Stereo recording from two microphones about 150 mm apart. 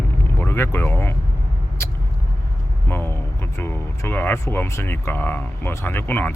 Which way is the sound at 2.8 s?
15° left (ahead or behind).